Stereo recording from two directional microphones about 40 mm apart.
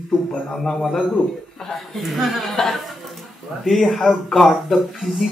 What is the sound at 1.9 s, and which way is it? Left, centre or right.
Speech, centre.